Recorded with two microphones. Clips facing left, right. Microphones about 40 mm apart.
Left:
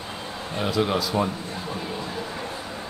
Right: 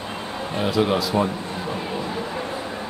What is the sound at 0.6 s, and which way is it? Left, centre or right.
Speech, centre.